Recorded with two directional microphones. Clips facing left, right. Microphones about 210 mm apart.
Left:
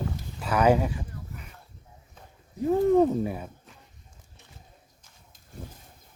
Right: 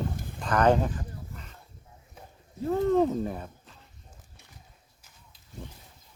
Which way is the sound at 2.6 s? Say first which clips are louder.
Left 3 dB; 15° left (ahead or behind).